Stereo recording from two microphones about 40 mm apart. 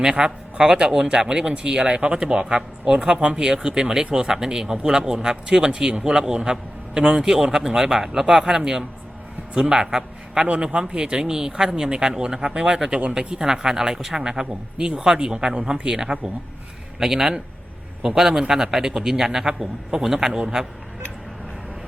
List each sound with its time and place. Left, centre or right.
0.0 s a man's voice: centre